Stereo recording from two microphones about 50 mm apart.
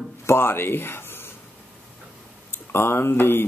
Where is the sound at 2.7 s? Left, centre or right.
Left.